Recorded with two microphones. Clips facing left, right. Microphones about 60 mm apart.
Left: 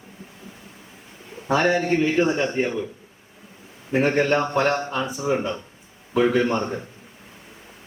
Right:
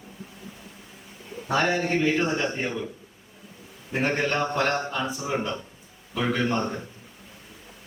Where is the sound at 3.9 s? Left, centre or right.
Left.